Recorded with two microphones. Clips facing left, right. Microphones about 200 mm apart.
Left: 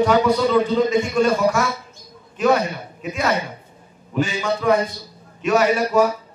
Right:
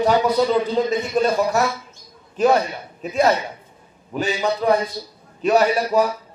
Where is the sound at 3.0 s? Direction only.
35° right (ahead or behind).